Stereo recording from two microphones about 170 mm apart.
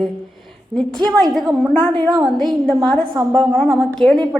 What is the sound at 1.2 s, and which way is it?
A woman's voice, centre (ahead or behind).